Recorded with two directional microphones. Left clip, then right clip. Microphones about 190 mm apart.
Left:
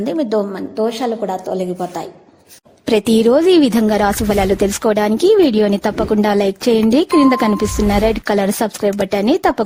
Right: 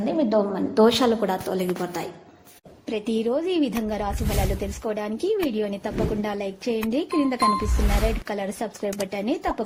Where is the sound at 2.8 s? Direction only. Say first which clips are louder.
Left 13 dB; 70° left (ahead or behind).